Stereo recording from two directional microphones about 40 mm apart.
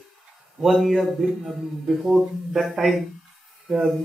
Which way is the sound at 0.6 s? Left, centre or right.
Centre.